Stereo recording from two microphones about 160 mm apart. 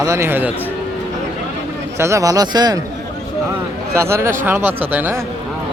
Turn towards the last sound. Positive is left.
turn(degrees=-10)  # may be behind; listen again after turning